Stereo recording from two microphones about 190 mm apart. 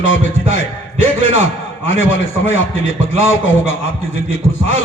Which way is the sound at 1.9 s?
90° left.